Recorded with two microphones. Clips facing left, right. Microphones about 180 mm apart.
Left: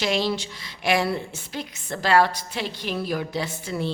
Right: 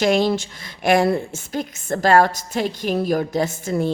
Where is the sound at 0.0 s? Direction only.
50° right (ahead or behind).